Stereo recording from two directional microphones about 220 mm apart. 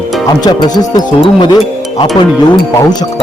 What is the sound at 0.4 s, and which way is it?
Speech, 15° left (ahead or behind).